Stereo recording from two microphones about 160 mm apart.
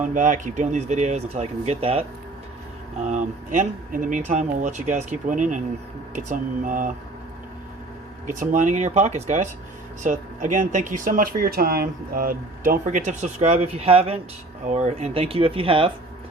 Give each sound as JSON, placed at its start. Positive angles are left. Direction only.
{"t": 0.0, "sound": "speech", "side_deg": -50}
{"t": 3.1, "sound": "speech", "side_deg": -50}
{"t": 8.3, "sound": "speech", "side_deg": -50}